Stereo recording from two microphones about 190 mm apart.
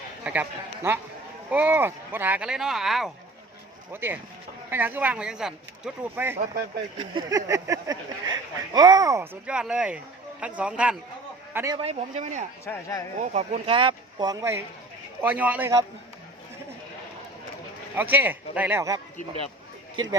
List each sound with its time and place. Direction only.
0.3 s speech: 10° right (ahead or behind)
6.9 s speech: 25° right (ahead or behind); by 10.9 s 5° right (ahead or behind)
11.5 s speech: 15° right (ahead or behind)
11.8 s speech: 35° right (ahead or behind)
12.6 s speech: 15° left (ahead or behind)
13.3 s speech: 30° right (ahead or behind); by 15.8 s 10° right (ahead or behind)
17.9 s speech: 10° right (ahead or behind)